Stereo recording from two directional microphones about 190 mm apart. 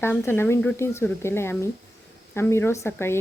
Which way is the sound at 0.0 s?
10° left (ahead or behind).